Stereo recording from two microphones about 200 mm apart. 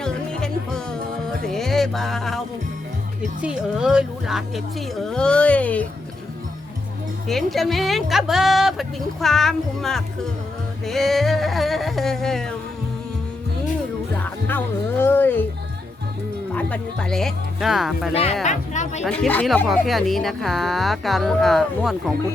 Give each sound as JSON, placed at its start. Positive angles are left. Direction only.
{"t": 0.0, "sound": "music", "side_deg": 5}
{"t": 3.4, "sound": "speech", "side_deg": -5}
{"t": 7.3, "sound": "speech", "side_deg": 0}
{"t": 14.4, "sound": "speech", "side_deg": 10}
{"t": 16.6, "sound": "speech", "side_deg": 5}
{"t": 18.1, "sound": "speech", "side_deg": 30}
{"t": 19.0, "sound": "speech", "side_deg": 5}